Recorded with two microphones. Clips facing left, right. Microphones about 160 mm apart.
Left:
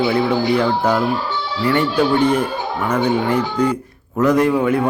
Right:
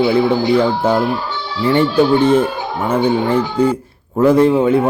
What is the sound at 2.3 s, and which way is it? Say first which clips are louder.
Speech: right 4 dB; 25° right (ahead or behind).